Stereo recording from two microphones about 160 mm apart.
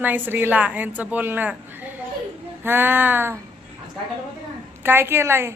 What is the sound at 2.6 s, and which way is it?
Speech, 10° right (ahead or behind).